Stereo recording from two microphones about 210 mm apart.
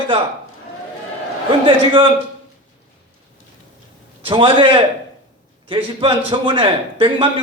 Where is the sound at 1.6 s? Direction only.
25° right (ahead or behind).